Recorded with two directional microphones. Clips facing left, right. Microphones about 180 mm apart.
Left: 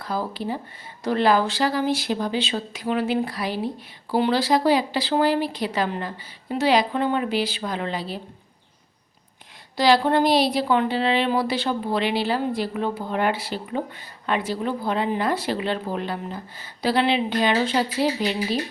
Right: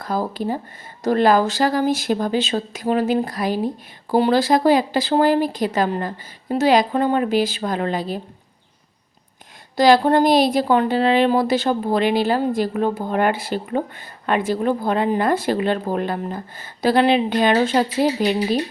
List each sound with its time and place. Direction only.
0.0 s a woman's voice: 45° right (ahead or behind)
9.7 s a woman's voice: 45° right (ahead or behind)